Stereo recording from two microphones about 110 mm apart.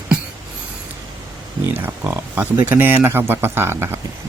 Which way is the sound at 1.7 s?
20° right (ahead or behind).